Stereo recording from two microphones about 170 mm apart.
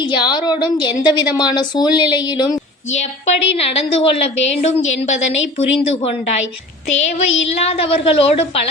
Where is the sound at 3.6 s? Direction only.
35° left (ahead or behind).